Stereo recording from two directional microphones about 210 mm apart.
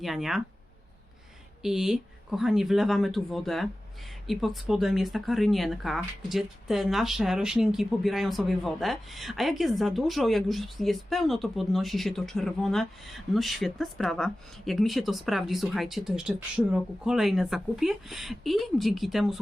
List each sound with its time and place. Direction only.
0.0 s speech: centre (ahead or behind)
1.6 s speech: centre (ahead or behind)